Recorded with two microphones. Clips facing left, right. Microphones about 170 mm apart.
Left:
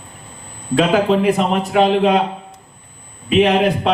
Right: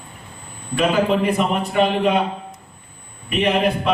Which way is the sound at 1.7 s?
90° left.